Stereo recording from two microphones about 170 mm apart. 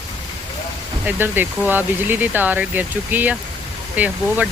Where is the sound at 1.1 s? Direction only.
10° right (ahead or behind).